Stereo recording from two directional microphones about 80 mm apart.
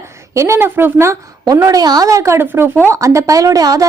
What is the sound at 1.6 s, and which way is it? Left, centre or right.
A woman's voice, right.